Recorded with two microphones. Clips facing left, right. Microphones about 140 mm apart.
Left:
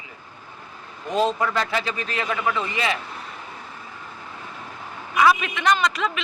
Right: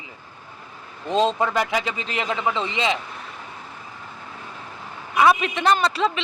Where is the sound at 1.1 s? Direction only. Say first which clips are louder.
Right 2 dB; 25° right (ahead or behind).